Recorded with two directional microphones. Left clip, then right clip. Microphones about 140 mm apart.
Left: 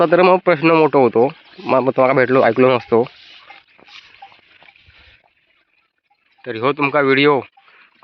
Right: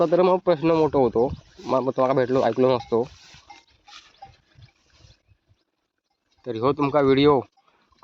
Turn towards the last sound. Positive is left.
turn(degrees=-15)  # may be behind; listen again after turning